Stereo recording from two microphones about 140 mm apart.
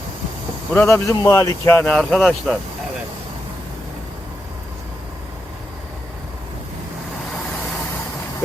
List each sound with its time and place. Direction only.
0.7 s speech: 15° left (ahead or behind)
1.9 s speech: 5° left (ahead or behind)